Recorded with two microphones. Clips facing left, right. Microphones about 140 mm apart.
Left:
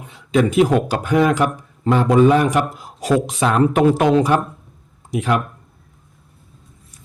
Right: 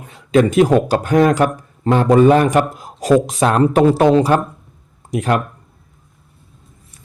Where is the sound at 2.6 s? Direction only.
Centre (ahead or behind).